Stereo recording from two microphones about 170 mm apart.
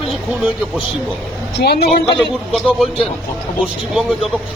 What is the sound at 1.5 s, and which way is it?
Speech, 65° left (ahead or behind).